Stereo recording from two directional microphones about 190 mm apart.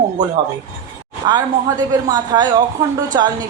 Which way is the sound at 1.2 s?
20° right (ahead or behind).